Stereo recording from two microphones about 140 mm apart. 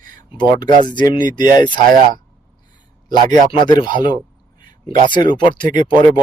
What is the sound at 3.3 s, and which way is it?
Speech, 30° left (ahead or behind).